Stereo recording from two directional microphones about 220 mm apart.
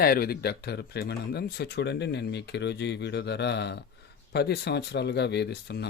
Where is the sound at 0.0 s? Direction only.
45° left (ahead or behind).